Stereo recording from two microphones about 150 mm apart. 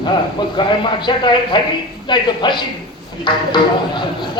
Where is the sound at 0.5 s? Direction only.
30° left (ahead or behind).